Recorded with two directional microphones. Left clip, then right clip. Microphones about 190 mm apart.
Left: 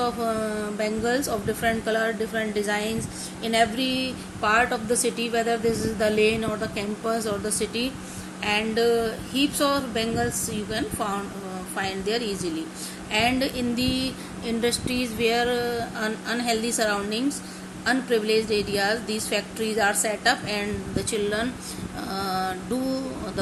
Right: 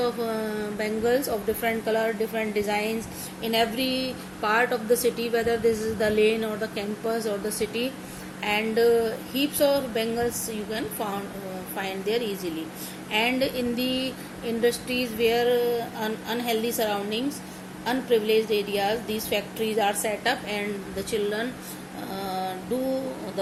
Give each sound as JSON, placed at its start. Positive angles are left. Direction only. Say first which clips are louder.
{"t": 0.0, "sound": "a woman's voice", "louder": "left 1 dB", "side_deg": 20}
{"t": 22.1, "sound": "mantra", "louder": "left 3 dB", "side_deg": 35}